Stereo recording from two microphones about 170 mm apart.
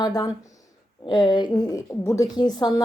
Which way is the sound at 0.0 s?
20° left (ahead or behind).